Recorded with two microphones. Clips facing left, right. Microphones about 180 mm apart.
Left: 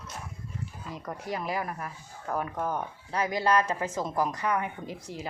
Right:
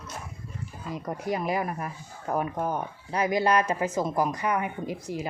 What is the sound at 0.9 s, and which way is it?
Speech, 20° right (ahead or behind).